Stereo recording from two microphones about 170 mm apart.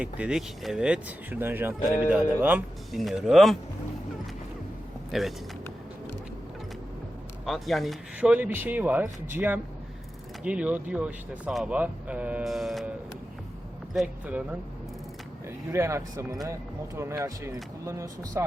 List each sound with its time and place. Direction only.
0.0 s speech: 5° right (ahead or behind)
5.1 s speech: centre (ahead or behind)
7.4 s speech: centre (ahead or behind)
13.9 s speech: 5° right (ahead or behind)
15.4 s speech: 15° right (ahead or behind)